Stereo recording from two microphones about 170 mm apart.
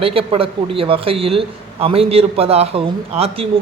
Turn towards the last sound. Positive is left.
turn(degrees=-35)  # may be behind; listen again after turning